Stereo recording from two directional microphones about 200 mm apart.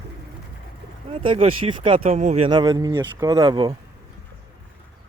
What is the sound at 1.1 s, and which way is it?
Speech, 25° right (ahead or behind).